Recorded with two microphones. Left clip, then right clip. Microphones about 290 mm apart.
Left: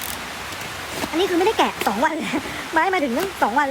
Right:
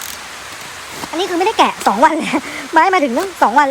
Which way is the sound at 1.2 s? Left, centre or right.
Right.